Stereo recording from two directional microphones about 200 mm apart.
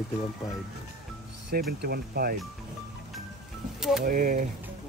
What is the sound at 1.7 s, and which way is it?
Speech, 50° right (ahead or behind).